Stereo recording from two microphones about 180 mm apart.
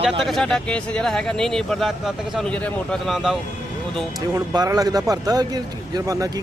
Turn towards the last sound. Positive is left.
turn(degrees=-20)  # may be behind; listen again after turning